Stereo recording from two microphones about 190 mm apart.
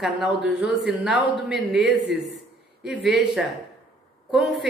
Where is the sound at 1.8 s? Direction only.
65° right (ahead or behind).